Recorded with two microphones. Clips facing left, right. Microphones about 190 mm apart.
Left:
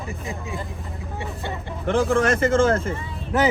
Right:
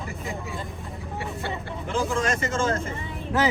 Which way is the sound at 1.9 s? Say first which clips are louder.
Left 6 dB; 60° left (ahead or behind).